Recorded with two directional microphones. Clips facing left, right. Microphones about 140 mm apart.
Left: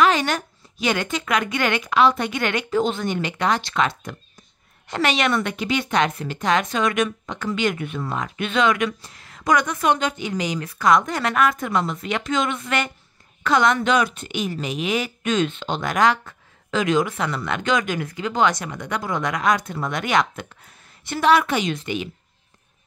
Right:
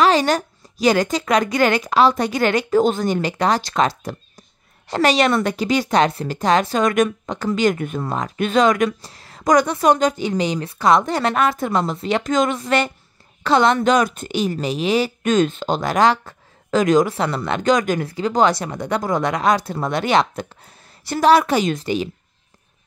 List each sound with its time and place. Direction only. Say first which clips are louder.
0.0 s a woman's voice: right 3 dB; 35° right (ahead or behind)